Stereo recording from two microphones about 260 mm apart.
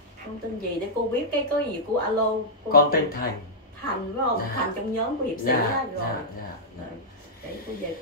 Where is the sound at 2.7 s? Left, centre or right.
Left.